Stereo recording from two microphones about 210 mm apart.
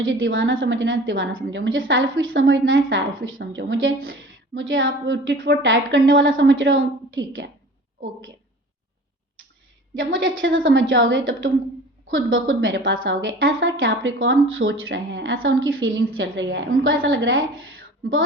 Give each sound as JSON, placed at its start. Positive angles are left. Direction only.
{"t": 0.0, "sound": "a woman's voice", "side_deg": -65}
{"t": 10.0, "sound": "a woman's voice", "side_deg": -65}